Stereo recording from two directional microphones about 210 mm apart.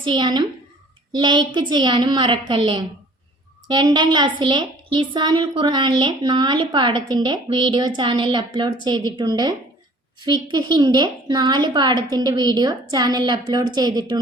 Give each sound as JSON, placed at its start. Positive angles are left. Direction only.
{"t": 0.0, "sound": "a woman's voice", "side_deg": -20}